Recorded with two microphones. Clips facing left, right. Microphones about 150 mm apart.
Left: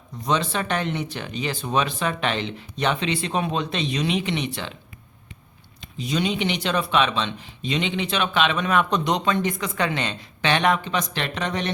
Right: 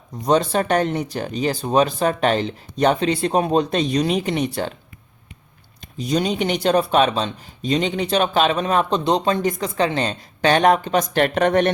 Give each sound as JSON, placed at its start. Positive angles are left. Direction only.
{"t": 0.3, "sound": "speech", "side_deg": -45}
{"t": 5.8, "sound": "speech", "side_deg": -45}